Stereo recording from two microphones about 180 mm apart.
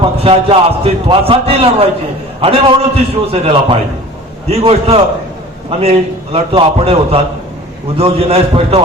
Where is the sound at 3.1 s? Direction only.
35° right (ahead or behind).